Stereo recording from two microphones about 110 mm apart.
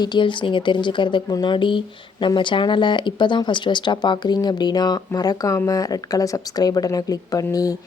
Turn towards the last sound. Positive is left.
turn(degrees=35)  # may be behind; listen again after turning